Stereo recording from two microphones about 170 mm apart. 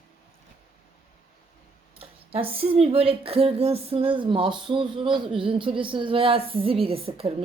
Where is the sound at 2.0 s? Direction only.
35° right (ahead or behind).